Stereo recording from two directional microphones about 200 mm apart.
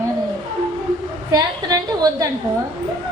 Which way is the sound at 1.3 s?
20° right (ahead or behind).